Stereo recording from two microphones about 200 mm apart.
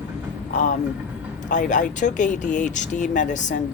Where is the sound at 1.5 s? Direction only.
40° left (ahead or behind).